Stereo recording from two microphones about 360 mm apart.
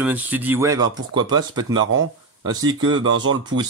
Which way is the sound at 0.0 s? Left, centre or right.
Centre.